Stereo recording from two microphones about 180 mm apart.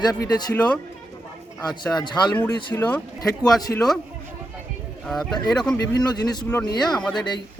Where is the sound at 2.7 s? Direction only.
15° left (ahead or behind).